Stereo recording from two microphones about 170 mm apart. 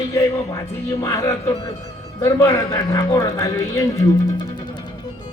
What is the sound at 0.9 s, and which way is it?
Speech, 20° left (ahead or behind).